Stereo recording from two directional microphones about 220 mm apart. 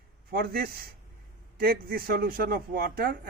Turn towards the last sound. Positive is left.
turn(degrees=-45)  # may be behind; listen again after turning